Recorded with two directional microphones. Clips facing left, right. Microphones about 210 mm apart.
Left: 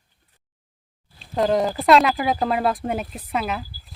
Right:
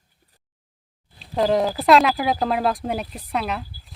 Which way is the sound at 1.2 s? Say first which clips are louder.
Even; centre (ahead or behind).